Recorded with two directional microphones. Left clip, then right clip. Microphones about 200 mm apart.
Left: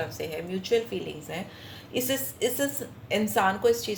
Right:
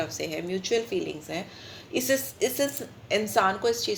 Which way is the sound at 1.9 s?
40° right (ahead or behind).